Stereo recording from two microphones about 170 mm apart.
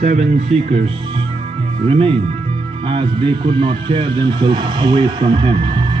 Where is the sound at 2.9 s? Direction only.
30° right (ahead or behind).